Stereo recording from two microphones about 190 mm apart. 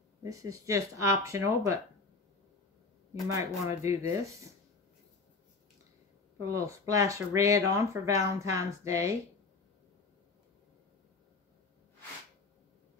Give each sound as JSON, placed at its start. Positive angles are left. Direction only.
{"t": 0.2, "sound": "speech", "side_deg": -15}
{"t": 3.3, "sound": "speech", "side_deg": -15}
{"t": 6.4, "sound": "speech", "side_deg": -15}